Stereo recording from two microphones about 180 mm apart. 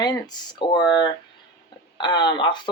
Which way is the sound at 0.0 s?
20° left (ahead or behind).